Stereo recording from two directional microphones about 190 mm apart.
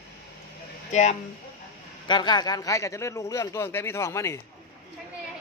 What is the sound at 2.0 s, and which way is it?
A man's voice, 25° left (ahead or behind).